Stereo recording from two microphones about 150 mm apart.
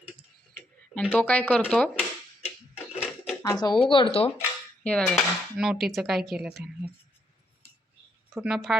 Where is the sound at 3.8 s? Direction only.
35° left (ahead or behind).